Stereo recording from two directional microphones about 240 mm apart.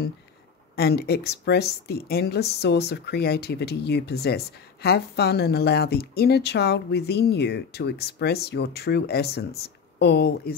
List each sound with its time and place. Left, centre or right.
0.7 s speech: left